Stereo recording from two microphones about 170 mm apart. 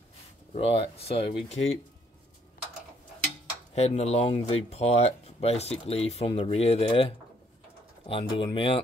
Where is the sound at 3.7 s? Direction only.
40° left (ahead or behind).